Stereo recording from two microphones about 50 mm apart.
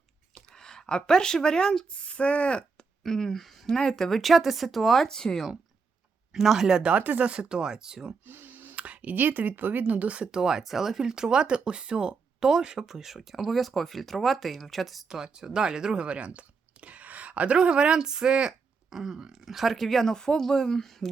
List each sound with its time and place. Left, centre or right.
0.5 s speech: centre
1.9 s speech: left
3.0 s a woman's voice: centre
6.3 s speech: centre
6.9 s speech: right; by 8.1 s centre
8.3 s a sound: right
8.7 s speech: right
10.3 s speech: centre
15.1 s speech: centre